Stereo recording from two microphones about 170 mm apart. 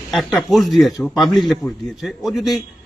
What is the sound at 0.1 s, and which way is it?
A man's voice, centre (ahead or behind).